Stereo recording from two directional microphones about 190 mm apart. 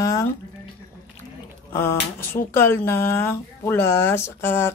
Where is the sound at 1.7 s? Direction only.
10° left (ahead or behind).